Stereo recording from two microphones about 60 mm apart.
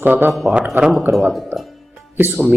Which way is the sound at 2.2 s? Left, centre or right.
Right.